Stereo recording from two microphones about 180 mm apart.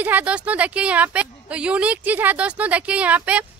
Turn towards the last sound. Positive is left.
turn(degrees=-10)  # may be behind; listen again after turning